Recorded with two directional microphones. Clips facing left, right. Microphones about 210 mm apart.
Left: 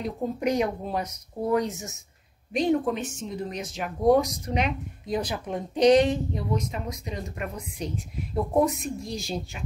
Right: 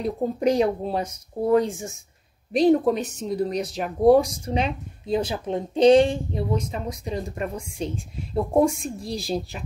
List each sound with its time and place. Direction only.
0.0 s speech: 30° right (ahead or behind)